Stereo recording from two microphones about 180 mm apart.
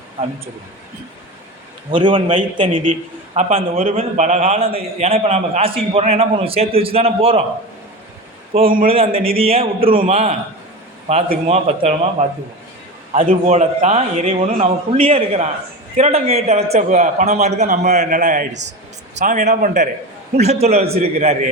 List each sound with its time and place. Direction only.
1.9 s a man's voice: 30° right (ahead or behind)
8.5 s a man's voice: 35° right (ahead or behind)